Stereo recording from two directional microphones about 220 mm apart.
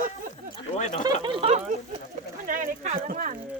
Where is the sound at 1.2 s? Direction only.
25° right (ahead or behind).